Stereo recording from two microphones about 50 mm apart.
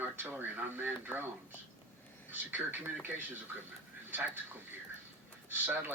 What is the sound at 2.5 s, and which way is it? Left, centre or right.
Speech, right.